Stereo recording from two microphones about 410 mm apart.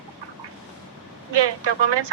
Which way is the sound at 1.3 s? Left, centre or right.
Right.